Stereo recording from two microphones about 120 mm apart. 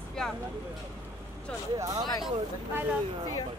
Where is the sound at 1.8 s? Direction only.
30° right (ahead or behind).